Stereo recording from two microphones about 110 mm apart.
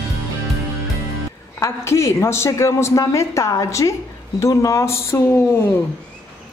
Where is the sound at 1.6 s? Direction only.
25° left (ahead or behind).